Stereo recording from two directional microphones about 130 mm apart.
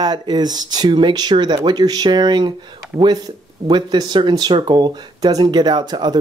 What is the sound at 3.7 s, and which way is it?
Speech, 35° right (ahead or behind).